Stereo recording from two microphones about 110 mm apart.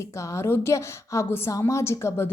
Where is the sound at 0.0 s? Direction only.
25° left (ahead or behind).